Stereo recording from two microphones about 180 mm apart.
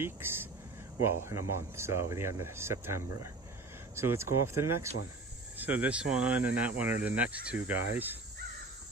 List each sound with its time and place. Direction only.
0.0 s speech: 10° right (ahead or behind)